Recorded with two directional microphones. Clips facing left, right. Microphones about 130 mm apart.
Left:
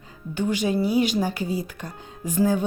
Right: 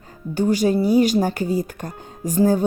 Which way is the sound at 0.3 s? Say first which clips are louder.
Right 5 dB; 40° right (ahead or behind).